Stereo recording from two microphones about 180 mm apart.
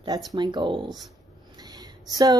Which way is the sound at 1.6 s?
20° right (ahead or behind).